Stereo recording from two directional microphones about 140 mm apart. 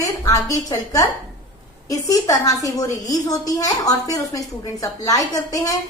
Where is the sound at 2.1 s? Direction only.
25° left (ahead or behind).